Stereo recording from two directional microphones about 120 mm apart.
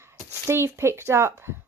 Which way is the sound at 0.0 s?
20° right (ahead or behind).